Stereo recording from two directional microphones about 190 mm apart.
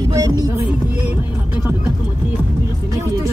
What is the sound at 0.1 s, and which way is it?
Music, 15° right (ahead or behind).